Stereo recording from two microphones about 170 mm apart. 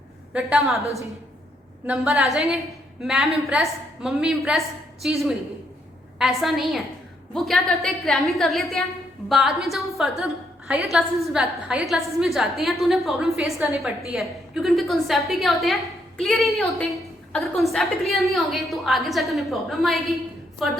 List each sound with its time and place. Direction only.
0.3 s a woman's voice: centre (ahead or behind)
1.9 s a woman's voice: 5° right (ahead or behind)